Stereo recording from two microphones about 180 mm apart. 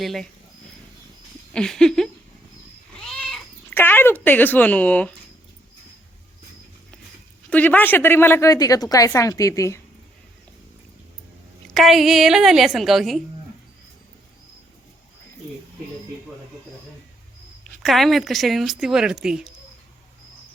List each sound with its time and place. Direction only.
0.0 s speech: centre (ahead or behind)
1.5 s speech: 5° left (ahead or behind)
7.5 s a woman's voice: 10° left (ahead or behind)
11.7 s speech: centre (ahead or behind)
17.8 s speech: centre (ahead or behind)